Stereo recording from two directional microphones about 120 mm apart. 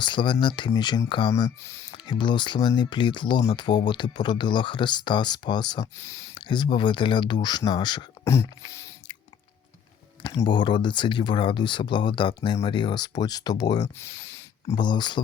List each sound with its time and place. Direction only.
0.0 s speech: 40° left (ahead or behind)
1.3 s speech: 30° left (ahead or behind)
1.9 s speech: 40° left (ahead or behind)
6.0 s speech: 25° left (ahead or behind)
6.3 s speech: 40° left (ahead or behind)
8.2 s a sound: 25° left (ahead or behind)
10.2 s speech: 40° left (ahead or behind)
14.0 s a sound: 20° left (ahead or behind)
14.8 s speech: 40° left (ahead or behind)